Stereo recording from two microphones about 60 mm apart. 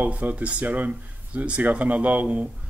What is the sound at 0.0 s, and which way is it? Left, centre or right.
Speech, right.